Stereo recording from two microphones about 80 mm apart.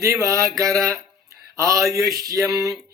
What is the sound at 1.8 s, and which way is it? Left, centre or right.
Speech, right.